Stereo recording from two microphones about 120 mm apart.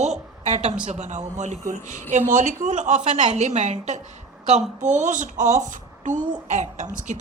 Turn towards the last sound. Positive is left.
turn(degrees=-80)